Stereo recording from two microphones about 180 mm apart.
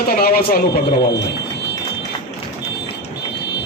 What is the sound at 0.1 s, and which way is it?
Speech, 55° left (ahead or behind).